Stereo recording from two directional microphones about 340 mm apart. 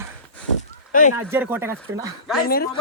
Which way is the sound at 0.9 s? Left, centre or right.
Left.